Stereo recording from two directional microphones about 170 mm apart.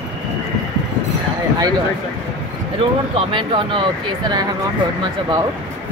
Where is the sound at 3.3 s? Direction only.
30° right (ahead or behind).